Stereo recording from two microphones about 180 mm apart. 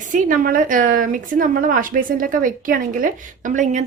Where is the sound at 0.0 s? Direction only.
45° right (ahead or behind).